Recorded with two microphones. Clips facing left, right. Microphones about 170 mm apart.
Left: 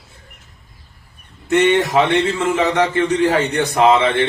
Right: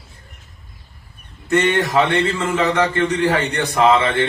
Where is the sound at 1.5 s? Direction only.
20° left (ahead or behind).